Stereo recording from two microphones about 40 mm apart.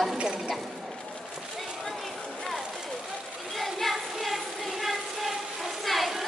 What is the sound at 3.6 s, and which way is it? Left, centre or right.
Child singing, centre.